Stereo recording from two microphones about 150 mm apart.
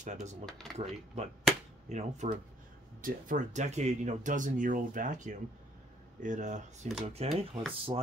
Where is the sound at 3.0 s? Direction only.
65° right (ahead or behind).